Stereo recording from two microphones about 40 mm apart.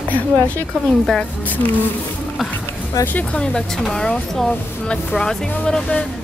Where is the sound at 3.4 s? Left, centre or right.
Left.